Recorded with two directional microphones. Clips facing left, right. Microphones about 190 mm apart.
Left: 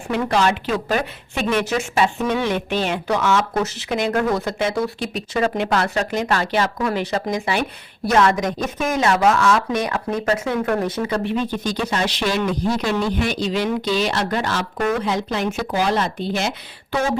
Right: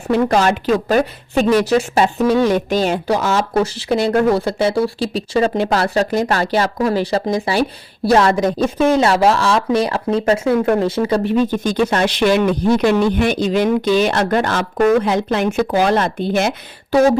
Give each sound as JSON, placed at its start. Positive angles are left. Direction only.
{"t": 0.1, "sound": "speech", "side_deg": -40}